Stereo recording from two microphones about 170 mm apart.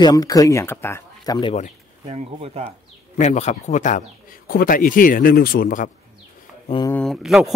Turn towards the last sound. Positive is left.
turn(degrees=0)  # may be behind; listen again after turning